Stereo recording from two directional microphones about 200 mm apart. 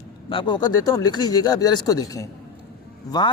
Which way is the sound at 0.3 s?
25° left (ahead or behind).